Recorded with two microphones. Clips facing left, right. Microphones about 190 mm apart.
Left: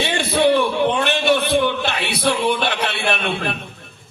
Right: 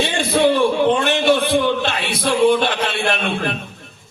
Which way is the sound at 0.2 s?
55° right (ahead or behind).